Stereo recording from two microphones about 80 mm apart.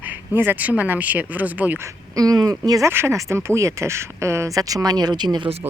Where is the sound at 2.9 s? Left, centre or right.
Right.